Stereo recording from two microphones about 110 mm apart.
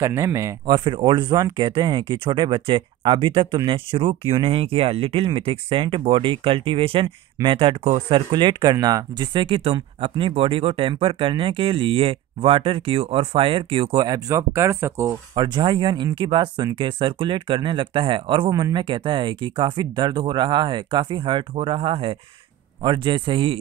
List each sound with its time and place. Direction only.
0.0 s speech: 25° right (ahead or behind)
0.7 s speech: 45° right (ahead or behind)
8.3 s speech: 45° right (ahead or behind); by 15.1 s 25° right (ahead or behind)
15.3 s speech: 45° right (ahead or behind)
22.8 s speech: 45° right (ahead or behind)